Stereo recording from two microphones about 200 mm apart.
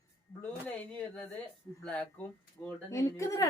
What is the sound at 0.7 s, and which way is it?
A woman's voice, 5° left (ahead or behind).